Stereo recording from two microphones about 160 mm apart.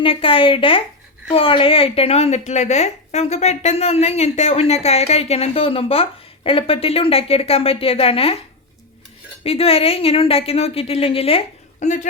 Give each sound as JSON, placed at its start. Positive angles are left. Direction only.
{"t": 0.0, "sound": "a woman's voice", "side_deg": 35}
{"t": 9.4, "sound": "a woman's voice", "side_deg": 40}